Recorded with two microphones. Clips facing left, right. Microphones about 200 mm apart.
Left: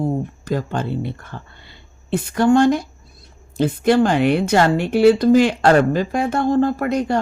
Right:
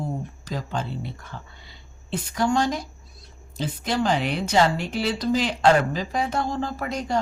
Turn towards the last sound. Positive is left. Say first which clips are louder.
# left 8 dB
turn(degrees=60)  # may be behind; listen again after turning